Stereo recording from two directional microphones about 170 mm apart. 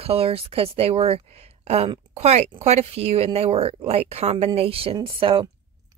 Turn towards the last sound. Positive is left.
turn(degrees=-30)  # may be behind; listen again after turning